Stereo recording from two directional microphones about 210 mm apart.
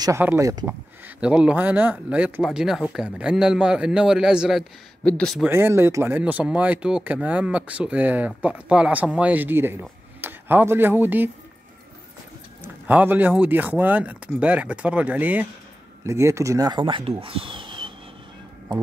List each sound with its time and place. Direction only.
0.0 s speech: 10° right (ahead or behind)
5.5 s speech: 10° right (ahead or behind)
12.6 s speech: 10° right (ahead or behind)
17.2 s a sound: 25° right (ahead or behind)